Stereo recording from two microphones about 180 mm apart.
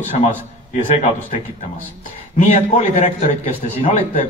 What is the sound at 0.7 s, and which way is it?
A man's voice, 40° left (ahead or behind).